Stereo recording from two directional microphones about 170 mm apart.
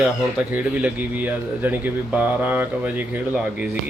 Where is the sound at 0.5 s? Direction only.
10° right (ahead or behind).